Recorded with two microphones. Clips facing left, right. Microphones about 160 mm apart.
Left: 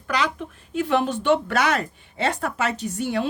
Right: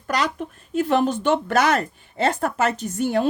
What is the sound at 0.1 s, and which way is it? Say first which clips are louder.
Speech: right 1 dB; 40° right (ahead or behind).